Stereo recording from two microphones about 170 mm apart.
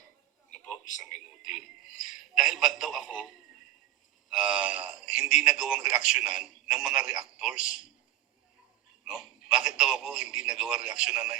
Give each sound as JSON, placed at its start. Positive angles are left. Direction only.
{"t": 0.5, "sound": "a sound", "side_deg": 5}
{"t": 0.9, "sound": "speech", "side_deg": 45}
{"t": 2.3, "sound": "a man's voice", "side_deg": 0}
{"t": 9.0, "sound": "a man's voice", "side_deg": -5}